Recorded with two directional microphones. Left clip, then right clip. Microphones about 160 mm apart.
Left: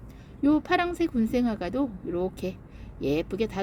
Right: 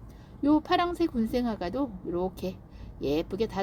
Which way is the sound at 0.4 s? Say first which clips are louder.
Left 1 dB; 5° left (ahead or behind).